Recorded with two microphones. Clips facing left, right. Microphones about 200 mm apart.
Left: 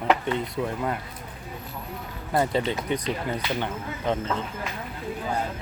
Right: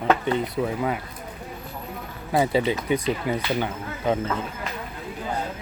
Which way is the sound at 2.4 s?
10° right (ahead or behind).